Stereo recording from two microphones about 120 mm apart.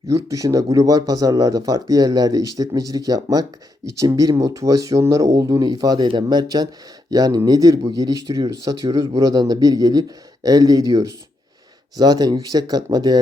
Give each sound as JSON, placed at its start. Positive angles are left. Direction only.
{"t": 0.1, "sound": "speech", "side_deg": -25}